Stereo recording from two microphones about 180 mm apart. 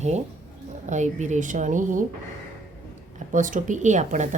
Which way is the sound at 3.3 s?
45° right (ahead or behind).